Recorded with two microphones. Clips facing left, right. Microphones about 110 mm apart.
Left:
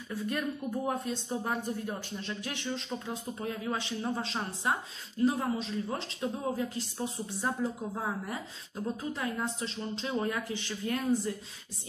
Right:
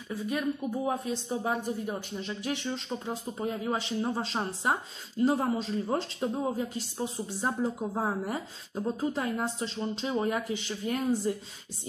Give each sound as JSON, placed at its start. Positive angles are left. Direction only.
{"t": 0.1, "sound": "a woman's voice", "side_deg": -10}
{"t": 3.1, "sound": "speech", "side_deg": -25}
{"t": 10.1, "sound": "speech", "side_deg": -20}